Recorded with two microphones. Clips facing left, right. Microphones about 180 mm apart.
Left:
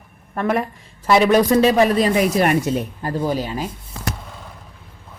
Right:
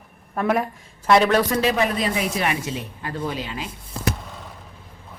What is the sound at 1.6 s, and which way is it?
Speech, 35° left (ahead or behind).